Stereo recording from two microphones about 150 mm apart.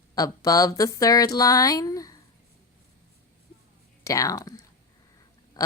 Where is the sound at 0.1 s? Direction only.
25° left (ahead or behind).